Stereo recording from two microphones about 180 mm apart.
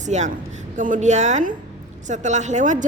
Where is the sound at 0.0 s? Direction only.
40° right (ahead or behind).